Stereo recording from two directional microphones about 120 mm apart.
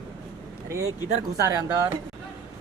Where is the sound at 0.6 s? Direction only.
25° right (ahead or behind).